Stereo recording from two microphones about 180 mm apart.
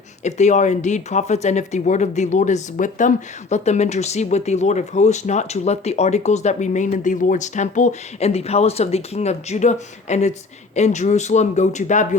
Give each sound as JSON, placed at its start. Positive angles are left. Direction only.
{"t": 0.2, "sound": "speech", "side_deg": 40}